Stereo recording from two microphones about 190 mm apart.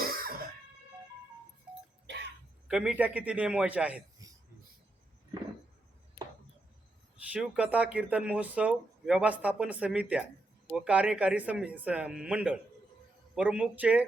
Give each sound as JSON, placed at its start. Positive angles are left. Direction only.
{"t": 0.0, "sound": "cough", "side_deg": -50}
{"t": 2.6, "sound": "speech", "side_deg": -5}
{"t": 7.3, "sound": "speech", "side_deg": -5}